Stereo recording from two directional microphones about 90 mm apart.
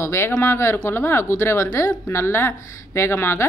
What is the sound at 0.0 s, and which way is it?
A woman's voice, 30° left (ahead or behind).